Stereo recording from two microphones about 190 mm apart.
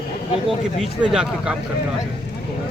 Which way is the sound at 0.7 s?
5° right (ahead or behind).